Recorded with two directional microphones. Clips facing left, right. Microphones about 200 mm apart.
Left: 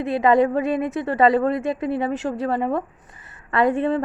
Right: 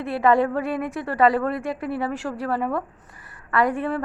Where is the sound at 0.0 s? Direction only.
20° left (ahead or behind).